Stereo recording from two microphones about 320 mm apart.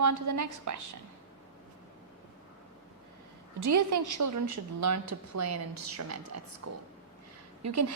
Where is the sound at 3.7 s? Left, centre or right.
Right.